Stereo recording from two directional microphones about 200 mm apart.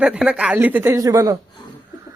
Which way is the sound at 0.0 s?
5° right (ahead or behind).